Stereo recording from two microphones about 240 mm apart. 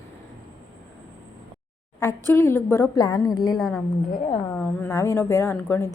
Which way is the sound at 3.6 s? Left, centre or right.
Centre.